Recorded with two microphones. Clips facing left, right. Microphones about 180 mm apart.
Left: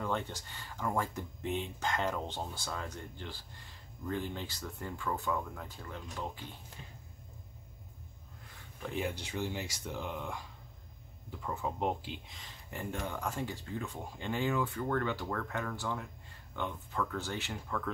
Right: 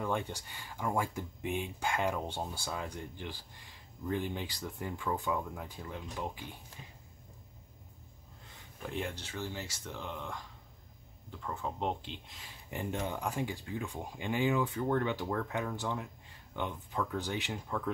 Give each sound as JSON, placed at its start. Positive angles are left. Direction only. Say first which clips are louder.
{"t": 0.0, "sound": "speech", "louder": "right 1 dB", "side_deg": -10}
{"t": 8.8, "sound": "speech", "louder": "left 2 dB", "side_deg": 0}
{"t": 9.1, "sound": "speech", "louder": "left 3 dB", "side_deg": 15}
{"t": 11.4, "sound": "speech", "louder": "left 1 dB", "side_deg": 10}
{"t": 12.7, "sound": "speech", "louder": "right 2 dB", "side_deg": -20}